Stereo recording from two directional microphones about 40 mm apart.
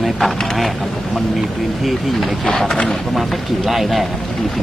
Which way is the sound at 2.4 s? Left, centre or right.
Centre.